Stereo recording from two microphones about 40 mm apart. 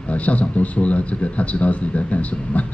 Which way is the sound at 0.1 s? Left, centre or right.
Left.